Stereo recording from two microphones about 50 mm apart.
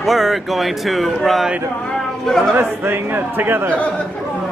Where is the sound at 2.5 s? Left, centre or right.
Right.